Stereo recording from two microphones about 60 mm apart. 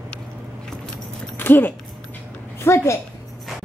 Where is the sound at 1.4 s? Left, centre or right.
Left.